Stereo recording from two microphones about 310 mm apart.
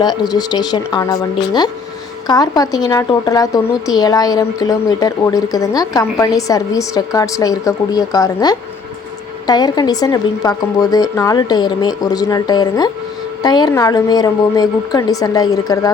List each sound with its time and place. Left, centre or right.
0.0 s a woman's voice: centre